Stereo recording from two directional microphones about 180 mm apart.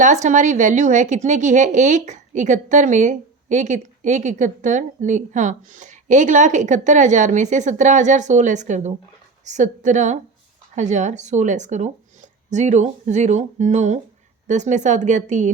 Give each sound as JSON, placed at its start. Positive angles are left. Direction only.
{"t": 0.0, "sound": "a woman's voice", "side_deg": -40}